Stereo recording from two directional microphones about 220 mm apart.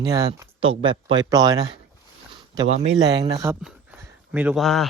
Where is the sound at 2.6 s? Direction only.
30° right (ahead or behind).